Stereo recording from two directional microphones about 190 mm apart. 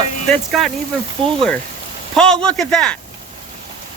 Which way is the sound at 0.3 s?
Centre (ahead or behind).